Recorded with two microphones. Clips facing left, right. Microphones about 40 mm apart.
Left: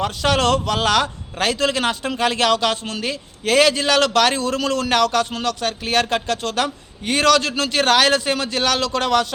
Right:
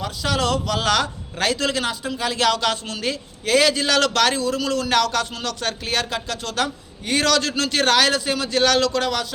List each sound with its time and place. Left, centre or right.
0.0 s a man's voice: left
2.4 s speech: left
3.4 s speech: left
4.4 s a man's voice: left
4.9 s speech: left
5.9 s a man's voice: left
7.0 s speech: left
8.0 s a man's voice: left
8.5 s speech: centre
8.9 s a man's voice: left